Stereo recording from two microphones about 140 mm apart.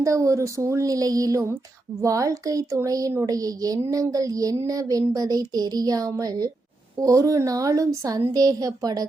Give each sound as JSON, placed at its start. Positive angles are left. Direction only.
{"t": 0.0, "sound": "speech", "side_deg": -25}